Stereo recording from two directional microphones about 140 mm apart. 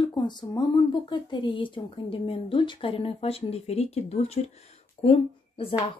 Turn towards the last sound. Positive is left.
turn(degrees=40)  # may be behind; listen again after turning